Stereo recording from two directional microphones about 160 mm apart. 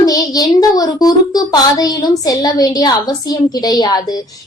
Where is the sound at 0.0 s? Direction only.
25° left (ahead or behind).